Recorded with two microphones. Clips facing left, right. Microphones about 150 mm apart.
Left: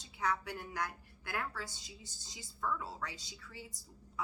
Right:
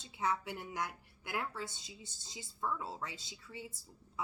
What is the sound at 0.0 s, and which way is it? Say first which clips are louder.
Speech: even; 25° right (ahead or behind).